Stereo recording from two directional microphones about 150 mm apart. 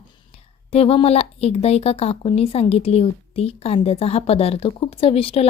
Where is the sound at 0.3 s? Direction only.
40° left (ahead or behind).